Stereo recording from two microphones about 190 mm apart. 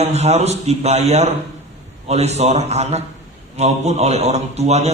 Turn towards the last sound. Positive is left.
turn(degrees=-35)  # may be behind; listen again after turning